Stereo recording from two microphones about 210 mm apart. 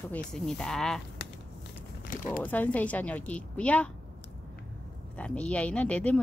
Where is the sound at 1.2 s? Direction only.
50° left (ahead or behind).